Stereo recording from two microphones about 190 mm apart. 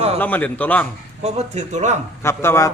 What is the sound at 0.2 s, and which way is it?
Speech, 10° left (ahead or behind).